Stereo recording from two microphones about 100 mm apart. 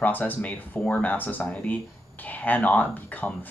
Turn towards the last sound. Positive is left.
turn(degrees=15)  # may be behind; listen again after turning